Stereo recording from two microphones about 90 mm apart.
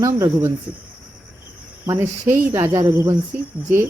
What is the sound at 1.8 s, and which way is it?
Speech, 30° right (ahead or behind).